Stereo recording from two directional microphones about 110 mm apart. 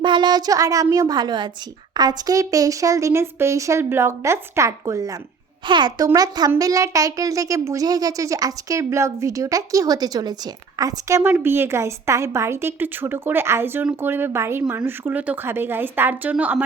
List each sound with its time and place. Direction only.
0.0 s a woman's voice: 45° right (ahead or behind); by 5.1 s 30° right (ahead or behind)
5.6 s a child's voice: 45° right (ahead or behind)
11.2 s a woman's voice: 15° right (ahead or behind)